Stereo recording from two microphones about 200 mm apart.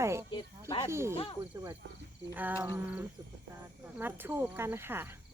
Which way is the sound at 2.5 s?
20° right (ahead or behind).